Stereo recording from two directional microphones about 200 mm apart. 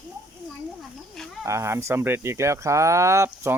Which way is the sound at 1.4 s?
15° right (ahead or behind).